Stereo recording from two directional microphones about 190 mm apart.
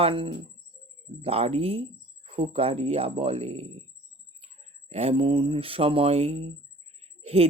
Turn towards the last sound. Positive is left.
turn(degrees=-30)  # may be behind; listen again after turning